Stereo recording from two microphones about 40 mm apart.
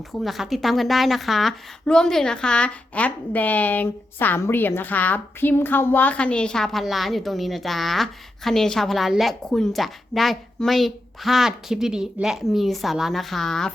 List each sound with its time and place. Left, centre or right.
0.1 s a woman's voice: centre
1.9 s a woman's voice: centre; by 3.8 s left
4.4 s a woman's voice: left
6.1 s a woman's voice: left
6.9 s a woman's voice: centre
9.0 s speech: centre
9.5 s a woman's voice: centre
11.7 s a woman's voice: centre